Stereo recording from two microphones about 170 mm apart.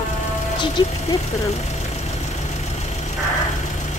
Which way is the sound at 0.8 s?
25° left (ahead or behind).